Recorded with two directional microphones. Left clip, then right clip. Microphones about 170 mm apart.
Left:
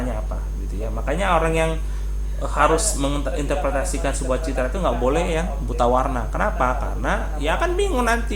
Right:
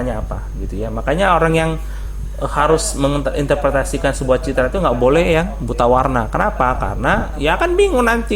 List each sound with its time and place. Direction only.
1.0 s speech: 45° right (ahead or behind)